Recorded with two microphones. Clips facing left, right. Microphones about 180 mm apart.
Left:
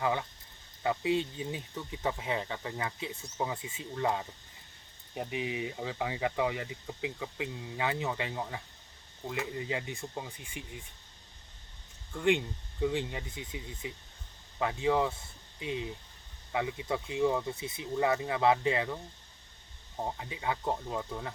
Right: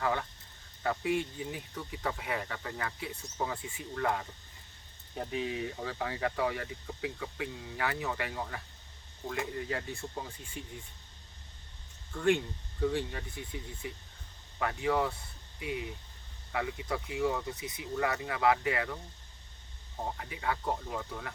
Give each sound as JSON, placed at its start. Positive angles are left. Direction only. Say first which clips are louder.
{"t": 0.0, "sound": "speech", "louder": "left 1 dB", "side_deg": 15}
{"t": 12.8, "sound": "speech", "louder": "even", "side_deg": 15}
{"t": 20.1, "sound": "speech", "louder": "even", "side_deg": 20}